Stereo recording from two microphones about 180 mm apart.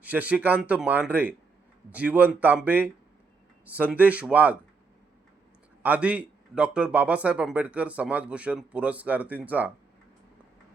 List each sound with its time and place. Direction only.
0.0 s a man's voice: 10° right (ahead or behind)
3.9 s a man's voice: 10° right (ahead or behind)
5.8 s a man's voice: 10° right (ahead or behind)